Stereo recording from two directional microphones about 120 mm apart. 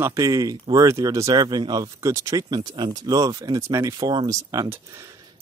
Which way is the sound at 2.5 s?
40° right (ahead or behind).